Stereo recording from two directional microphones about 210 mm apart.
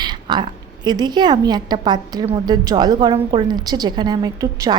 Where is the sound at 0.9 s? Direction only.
20° right (ahead or behind).